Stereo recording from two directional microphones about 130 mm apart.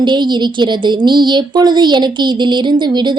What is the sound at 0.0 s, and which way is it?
A woman's voice, 35° right (ahead or behind).